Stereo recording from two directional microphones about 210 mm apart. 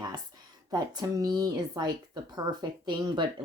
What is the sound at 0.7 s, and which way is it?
Speech, 20° right (ahead or behind).